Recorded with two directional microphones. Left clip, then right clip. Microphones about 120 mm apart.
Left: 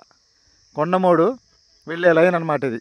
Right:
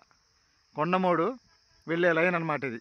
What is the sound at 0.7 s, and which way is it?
A man's voice, 55° left (ahead or behind).